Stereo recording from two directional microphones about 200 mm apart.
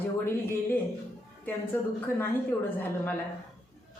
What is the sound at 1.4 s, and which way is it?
A man's voice, 10° left (ahead or behind).